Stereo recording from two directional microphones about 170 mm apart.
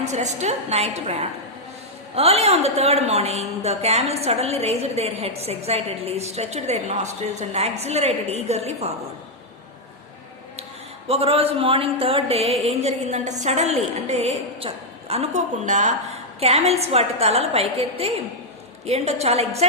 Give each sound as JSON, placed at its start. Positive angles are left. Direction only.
{"t": 0.0, "sound": "a woman's voice", "side_deg": -40}
{"t": 11.1, "sound": "a woman's voice", "side_deg": -35}